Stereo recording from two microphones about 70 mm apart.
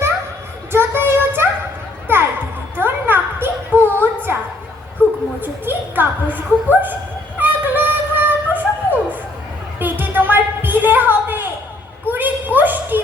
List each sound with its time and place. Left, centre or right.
0.7 s child singing: right
2.1 s music: right
2.7 s children playing: right
5.0 s a sound: right
7.3 s music: right
9.8 s a sound: right